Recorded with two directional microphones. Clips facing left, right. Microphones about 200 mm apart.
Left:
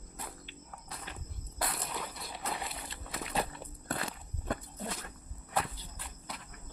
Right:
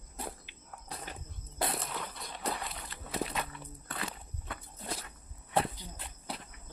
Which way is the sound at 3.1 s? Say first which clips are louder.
Right 7 dB; 30° right (ahead or behind).